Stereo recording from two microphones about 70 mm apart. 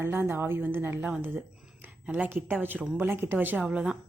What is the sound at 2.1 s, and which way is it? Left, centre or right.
Speech, right.